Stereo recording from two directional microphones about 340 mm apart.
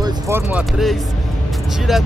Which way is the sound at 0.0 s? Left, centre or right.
Centre.